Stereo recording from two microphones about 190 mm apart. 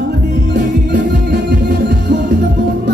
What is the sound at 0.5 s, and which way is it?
Music, 60° right (ahead or behind).